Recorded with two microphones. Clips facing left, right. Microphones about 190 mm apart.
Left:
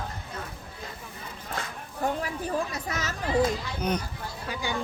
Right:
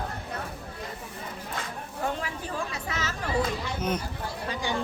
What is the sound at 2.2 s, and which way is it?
Chatter, 40° left (ahead or behind).